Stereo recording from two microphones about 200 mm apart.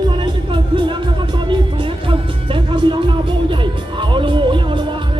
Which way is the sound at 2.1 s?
25° right (ahead or behind).